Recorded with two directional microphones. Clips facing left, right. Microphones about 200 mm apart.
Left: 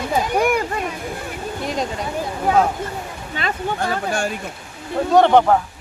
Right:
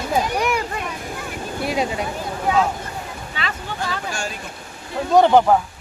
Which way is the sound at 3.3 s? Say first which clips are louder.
Left 6 dB; 45° left (ahead or behind).